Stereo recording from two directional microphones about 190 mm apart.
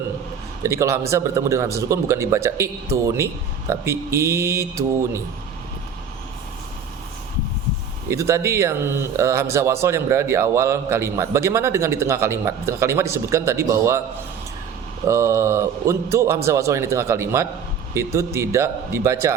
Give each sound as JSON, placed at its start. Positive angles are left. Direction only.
{"t": 0.6, "sound": "speech", "side_deg": -15}
{"t": 8.1, "sound": "speech", "side_deg": -15}
{"t": 15.0, "sound": "speech", "side_deg": -15}